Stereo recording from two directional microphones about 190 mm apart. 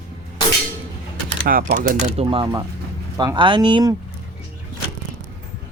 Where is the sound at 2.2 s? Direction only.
30° right (ahead or behind).